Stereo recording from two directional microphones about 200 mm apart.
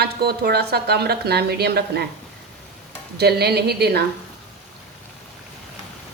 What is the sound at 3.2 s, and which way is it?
Speech, 55° right (ahead or behind).